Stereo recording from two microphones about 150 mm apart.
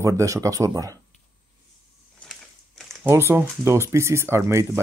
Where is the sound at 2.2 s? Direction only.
Centre (ahead or behind).